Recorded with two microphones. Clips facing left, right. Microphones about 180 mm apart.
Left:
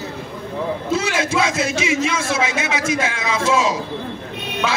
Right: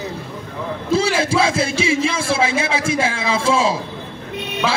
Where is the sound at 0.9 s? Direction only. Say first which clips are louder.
Right 5 dB; 30° right (ahead or behind).